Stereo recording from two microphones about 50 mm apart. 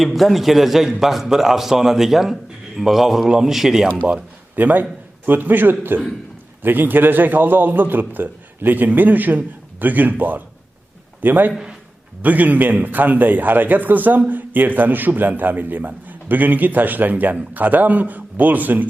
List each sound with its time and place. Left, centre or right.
0.0 s a man's voice: centre
4.5 s a man's voice: right